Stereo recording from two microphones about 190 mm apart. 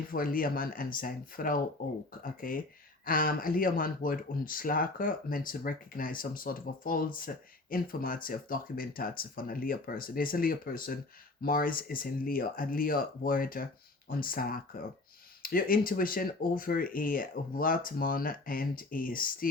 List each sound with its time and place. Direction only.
0.1 s speech: 50° left (ahead or behind)